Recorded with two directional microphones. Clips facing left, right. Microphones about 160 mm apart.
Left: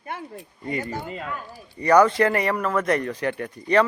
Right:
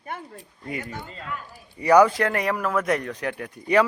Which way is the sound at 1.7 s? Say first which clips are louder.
Even; 10° right (ahead or behind).